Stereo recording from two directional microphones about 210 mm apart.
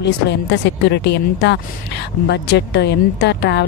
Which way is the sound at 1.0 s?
55° left (ahead or behind).